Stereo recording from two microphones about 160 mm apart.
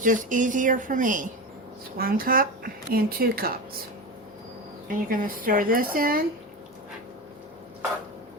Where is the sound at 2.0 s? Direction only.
65° right (ahead or behind).